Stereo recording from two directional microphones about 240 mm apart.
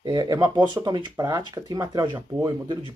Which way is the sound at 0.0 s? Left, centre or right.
Centre.